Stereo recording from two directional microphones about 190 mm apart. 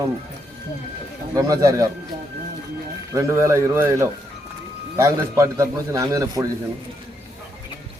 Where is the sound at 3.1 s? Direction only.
15° right (ahead or behind).